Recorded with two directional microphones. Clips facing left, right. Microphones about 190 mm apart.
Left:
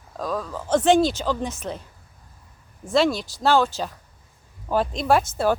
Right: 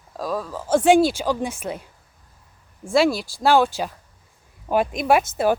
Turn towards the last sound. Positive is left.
turn(degrees=-10)  # may be behind; listen again after turning